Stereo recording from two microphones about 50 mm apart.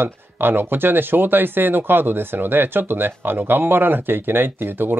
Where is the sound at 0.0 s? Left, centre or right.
Right.